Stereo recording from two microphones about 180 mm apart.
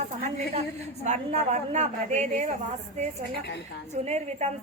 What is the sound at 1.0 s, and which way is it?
A woman's voice, 40° right (ahead or behind).